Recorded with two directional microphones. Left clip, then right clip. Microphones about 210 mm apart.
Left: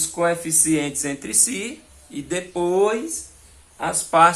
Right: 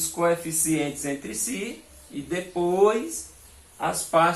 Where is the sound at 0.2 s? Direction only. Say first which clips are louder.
Left 2 dB; 50° left (ahead or behind).